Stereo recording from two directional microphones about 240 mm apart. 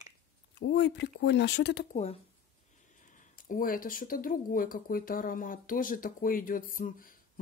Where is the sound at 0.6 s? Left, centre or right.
Left.